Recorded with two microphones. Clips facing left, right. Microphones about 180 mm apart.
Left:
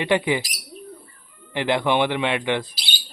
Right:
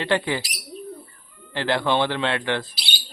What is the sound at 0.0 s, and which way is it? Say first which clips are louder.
Speech: left 2 dB; 15° left (ahead or behind).